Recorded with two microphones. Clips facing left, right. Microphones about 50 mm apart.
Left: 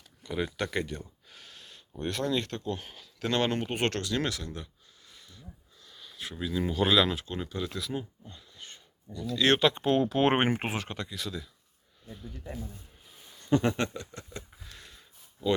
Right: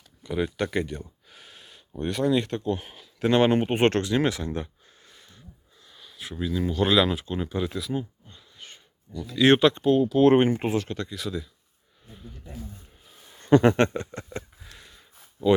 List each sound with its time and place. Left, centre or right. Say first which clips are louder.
0.2 s speech: right 5 dB; centre
1.4 s speech: right 2 dB; centre; by 5.4 s right
5.8 s speech: even; centre
9.9 s speech: right 5 dB; left
10.2 s speech: right 7 dB; left
11.1 s speech: right 5 dB; centre
12.0 s speech: left 1 dB; centre
13.5 s speech: right 8 dB; right
13.9 s speech: right 8 dB; right
14.6 s a sound: right 1 dB; centre